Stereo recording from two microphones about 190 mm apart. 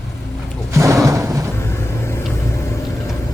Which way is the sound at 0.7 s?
15° right (ahead or behind).